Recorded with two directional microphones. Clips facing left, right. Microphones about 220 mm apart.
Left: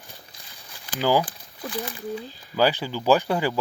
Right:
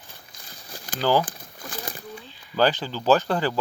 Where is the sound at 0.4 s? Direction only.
45° right (ahead or behind).